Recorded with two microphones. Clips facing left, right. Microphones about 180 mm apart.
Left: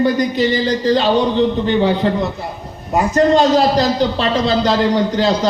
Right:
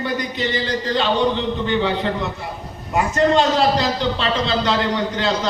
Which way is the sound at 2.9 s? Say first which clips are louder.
Left 4 dB; 40° left (ahead or behind).